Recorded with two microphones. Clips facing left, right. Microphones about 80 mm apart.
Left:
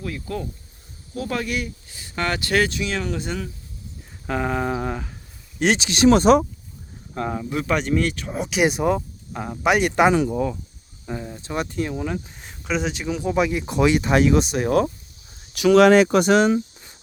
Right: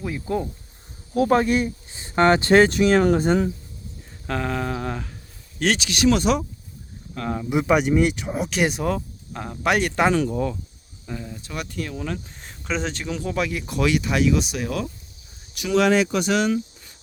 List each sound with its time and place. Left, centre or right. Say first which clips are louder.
0.0 s speech: right 4 dB; centre
1.1 s speech: right 8 dB; right
2.7 s speech: right 9 dB; right
4.3 s speech: left 2 dB; centre
5.5 s speech: left 3 dB; left
7.5 s speech: right 4 dB; centre
8.4 s speech: left 4 dB; centre
11.0 s speech: left 3 dB; left
15.5 s speech: left 6 dB; left